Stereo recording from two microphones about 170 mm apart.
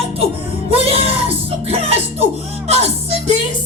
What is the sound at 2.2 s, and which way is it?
Music, 40° right (ahead or behind).